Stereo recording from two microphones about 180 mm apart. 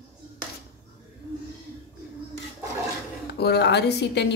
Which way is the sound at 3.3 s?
65° left (ahead or behind).